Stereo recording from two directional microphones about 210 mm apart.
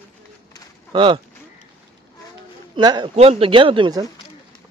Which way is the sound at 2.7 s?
20° right (ahead or behind).